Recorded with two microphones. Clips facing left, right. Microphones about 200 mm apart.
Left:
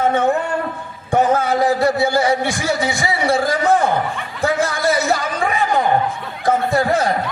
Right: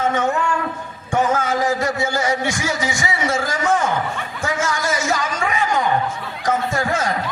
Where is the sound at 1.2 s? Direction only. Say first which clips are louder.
Left 3 dB; 35° left (ahead or behind).